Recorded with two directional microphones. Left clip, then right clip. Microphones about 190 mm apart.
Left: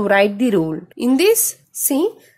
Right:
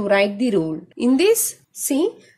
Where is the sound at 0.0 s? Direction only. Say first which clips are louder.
Left 3 dB; 25° left (ahead or behind).